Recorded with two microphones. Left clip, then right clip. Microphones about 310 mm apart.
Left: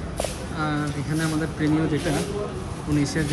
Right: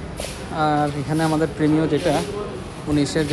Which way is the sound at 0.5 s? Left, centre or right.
Centre.